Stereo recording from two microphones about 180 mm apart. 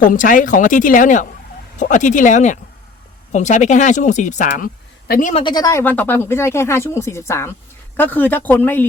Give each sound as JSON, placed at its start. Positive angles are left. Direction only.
{"t": 0.0, "sound": "speech", "side_deg": 50}
{"t": 5.3, "sound": "speech", "side_deg": 25}